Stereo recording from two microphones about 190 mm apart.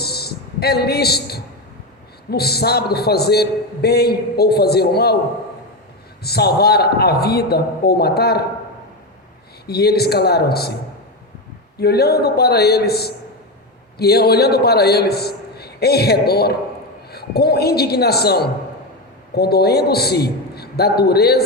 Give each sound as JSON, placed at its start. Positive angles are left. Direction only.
{"t": 0.0, "sound": "a sound", "side_deg": 55}
{"t": 2.3, "sound": "a man's voice", "side_deg": 55}
{"t": 6.2, "sound": "a man's voice", "side_deg": 55}
{"t": 9.6, "sound": "a man's voice", "side_deg": 55}
{"t": 11.8, "sound": "a man's voice", "side_deg": 55}